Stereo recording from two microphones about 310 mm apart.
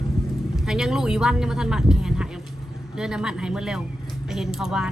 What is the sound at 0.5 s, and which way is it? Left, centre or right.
A man's voice, centre.